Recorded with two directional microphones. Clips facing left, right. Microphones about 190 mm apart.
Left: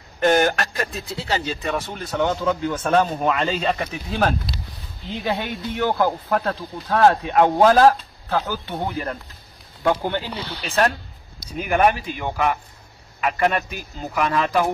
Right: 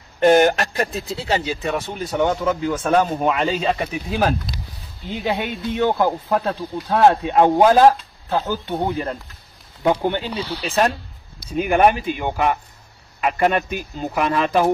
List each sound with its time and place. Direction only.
0.2 s speech: 25° right (ahead or behind)
2.3 s speech: centre (ahead or behind)
11.5 s speech: 25° right (ahead or behind)